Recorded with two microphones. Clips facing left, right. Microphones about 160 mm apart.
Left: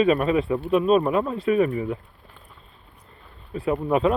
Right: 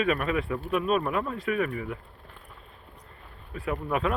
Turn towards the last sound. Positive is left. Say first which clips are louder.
# left 7 dB
turn(degrees=25)  # may be behind; listen again after turning